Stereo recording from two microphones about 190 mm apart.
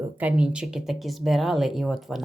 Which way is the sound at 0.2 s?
5° right (ahead or behind).